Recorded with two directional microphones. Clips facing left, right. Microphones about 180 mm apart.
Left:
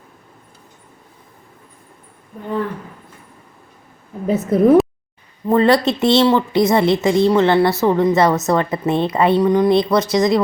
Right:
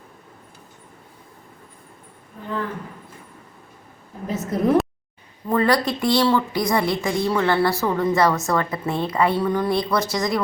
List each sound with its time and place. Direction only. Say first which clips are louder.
4.4 s a woman's voice: left 8 dB; 55° left (ahead or behind)
5.5 s a woman's voice: left 6 dB; 25° left (ahead or behind)